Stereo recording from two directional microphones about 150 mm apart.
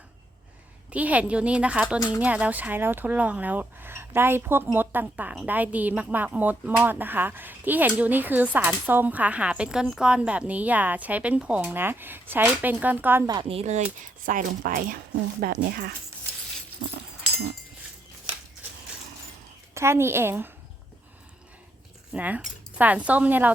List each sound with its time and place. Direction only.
0.9 s speech: 10° right (ahead or behind)
13.2 s speech: 30° right (ahead or behind); by 13.8 s 45° right (ahead or behind)
14.3 s speech: 65° right (ahead or behind)
15.4 s speech: 80° right
19.7 s speech: 15° right (ahead or behind)
22.1 s speech: 10° right (ahead or behind)